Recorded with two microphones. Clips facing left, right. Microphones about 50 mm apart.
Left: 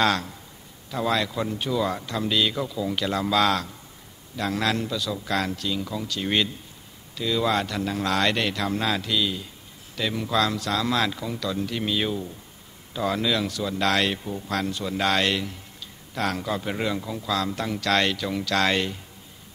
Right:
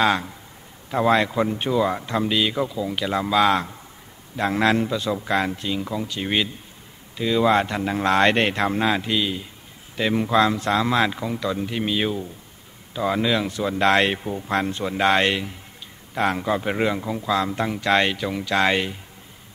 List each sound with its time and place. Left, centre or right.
0.0 s speech: centre
0.8 s speech: right
4.4 s speech: right